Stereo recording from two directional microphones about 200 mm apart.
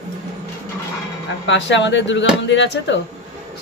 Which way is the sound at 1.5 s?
65° left (ahead or behind).